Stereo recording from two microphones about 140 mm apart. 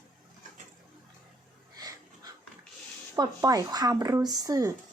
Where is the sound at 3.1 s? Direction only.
25° right (ahead or behind).